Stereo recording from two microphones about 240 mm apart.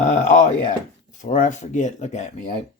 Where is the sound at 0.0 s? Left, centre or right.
Left.